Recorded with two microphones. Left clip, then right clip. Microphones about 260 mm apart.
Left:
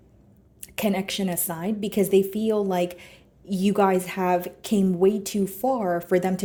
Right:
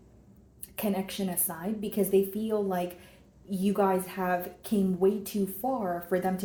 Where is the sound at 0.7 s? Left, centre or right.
Left.